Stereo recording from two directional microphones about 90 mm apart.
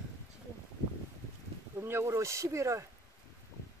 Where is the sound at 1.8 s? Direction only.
30° right (ahead or behind).